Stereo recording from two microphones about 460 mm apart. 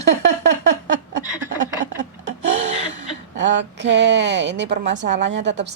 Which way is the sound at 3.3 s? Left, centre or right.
Right.